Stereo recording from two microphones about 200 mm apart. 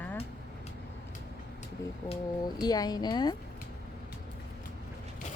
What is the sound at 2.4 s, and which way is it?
Speech, 20° left (ahead or behind).